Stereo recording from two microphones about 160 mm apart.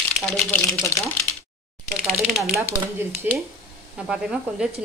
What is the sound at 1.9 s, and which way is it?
Speech, centre (ahead or behind).